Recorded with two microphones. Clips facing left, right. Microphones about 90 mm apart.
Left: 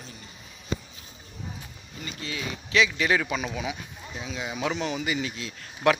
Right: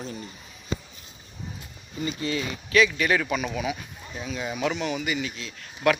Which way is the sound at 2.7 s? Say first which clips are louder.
Right 2 dB; 20° left (ahead or behind).